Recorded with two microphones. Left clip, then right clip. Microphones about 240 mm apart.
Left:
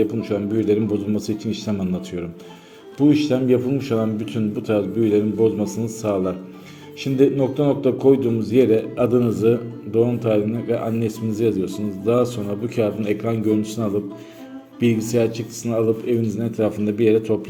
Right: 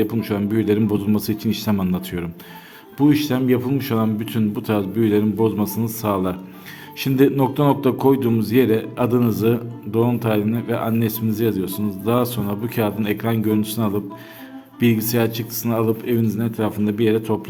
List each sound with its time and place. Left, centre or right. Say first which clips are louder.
0.0 s a man's voice: left 1 dB; right